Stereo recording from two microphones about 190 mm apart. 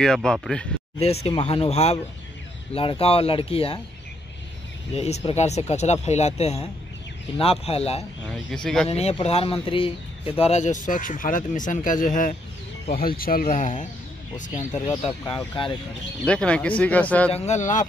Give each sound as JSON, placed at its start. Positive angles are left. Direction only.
{"t": 0.0, "sound": "speech", "side_deg": 5}
{"t": 0.9, "sound": "speech", "side_deg": 30}
{"t": 4.9, "sound": "speech", "side_deg": 35}
{"t": 14.6, "sound": "speech", "side_deg": 15}
{"t": 15.0, "sound": "speech", "side_deg": 25}
{"t": 16.3, "sound": "speech", "side_deg": 5}
{"t": 17.3, "sound": "speech", "side_deg": 40}